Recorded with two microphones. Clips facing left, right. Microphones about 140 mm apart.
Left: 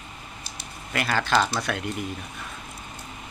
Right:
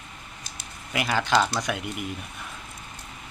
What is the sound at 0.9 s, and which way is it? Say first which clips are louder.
Speech: even; 15° right (ahead or behind).